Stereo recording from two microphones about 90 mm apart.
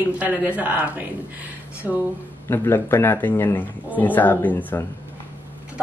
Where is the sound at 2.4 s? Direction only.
25° left (ahead or behind).